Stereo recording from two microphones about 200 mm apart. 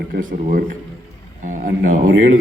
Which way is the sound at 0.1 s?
40° right (ahead or behind).